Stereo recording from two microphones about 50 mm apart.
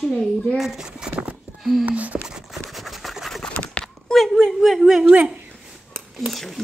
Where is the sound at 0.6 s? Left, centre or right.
Centre.